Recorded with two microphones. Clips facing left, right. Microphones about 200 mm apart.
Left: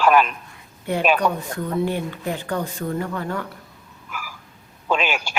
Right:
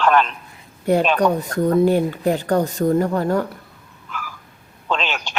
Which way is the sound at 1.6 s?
40° right (ahead or behind).